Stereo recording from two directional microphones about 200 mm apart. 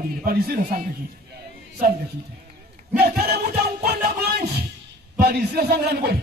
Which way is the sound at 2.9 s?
50° right (ahead or behind).